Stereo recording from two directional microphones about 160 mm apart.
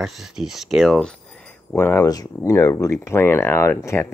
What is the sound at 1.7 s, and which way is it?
Speech, 15° left (ahead or behind).